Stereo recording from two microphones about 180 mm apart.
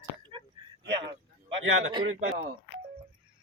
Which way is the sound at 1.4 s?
25° right (ahead or behind).